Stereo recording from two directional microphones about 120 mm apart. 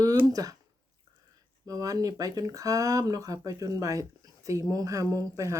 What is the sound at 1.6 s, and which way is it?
Speech, 30° right (ahead or behind).